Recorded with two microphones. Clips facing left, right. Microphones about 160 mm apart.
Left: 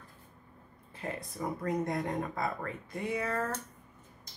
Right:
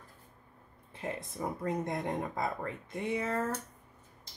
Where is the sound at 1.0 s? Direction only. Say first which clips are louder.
Even; 20° right (ahead or behind).